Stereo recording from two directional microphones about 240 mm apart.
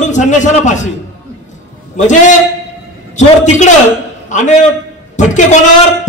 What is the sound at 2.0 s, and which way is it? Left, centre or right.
A man's voice, left.